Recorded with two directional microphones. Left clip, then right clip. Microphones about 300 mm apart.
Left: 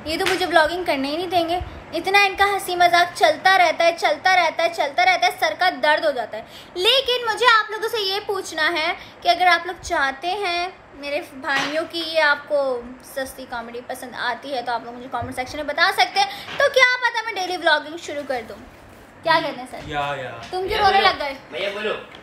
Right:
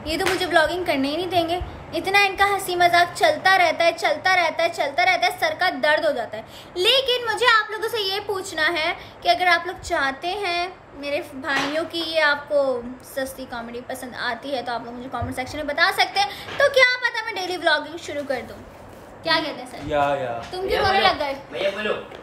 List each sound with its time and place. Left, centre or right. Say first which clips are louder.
0.0 s a woman's voice: left 1 dB; centre
19.2 s a woman's voice: left 3 dB; centre
19.9 s a woman's voice: right 5 dB; centre
20.6 s a woman's voice: left 3 dB; centre
20.9 s a woman's voice: left 1 dB; centre